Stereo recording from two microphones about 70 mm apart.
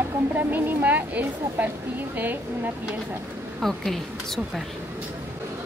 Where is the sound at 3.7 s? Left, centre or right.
Centre.